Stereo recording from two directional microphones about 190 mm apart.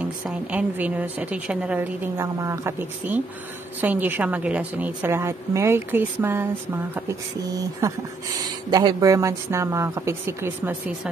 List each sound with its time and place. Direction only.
0.0 s a woman's voice: 5° right (ahead or behind)